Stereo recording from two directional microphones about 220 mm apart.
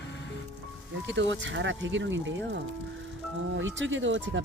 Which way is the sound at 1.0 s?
55° right (ahead or behind).